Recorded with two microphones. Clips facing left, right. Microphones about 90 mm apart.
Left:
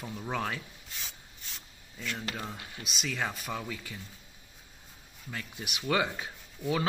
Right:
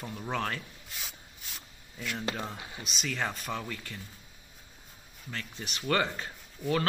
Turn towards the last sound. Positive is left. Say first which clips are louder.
# right 1 dB
turn(degrees=5)  # may be behind; listen again after turning